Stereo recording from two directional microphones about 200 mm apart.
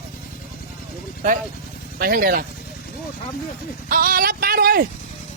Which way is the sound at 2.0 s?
45° right (ahead or behind).